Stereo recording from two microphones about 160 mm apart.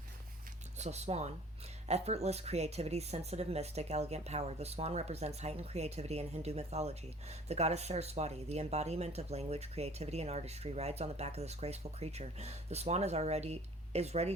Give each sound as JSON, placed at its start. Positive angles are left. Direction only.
{"t": 0.8, "sound": "speech", "side_deg": -45}